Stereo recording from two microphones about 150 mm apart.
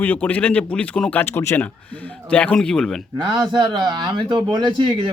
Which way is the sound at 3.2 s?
30° right (ahead or behind).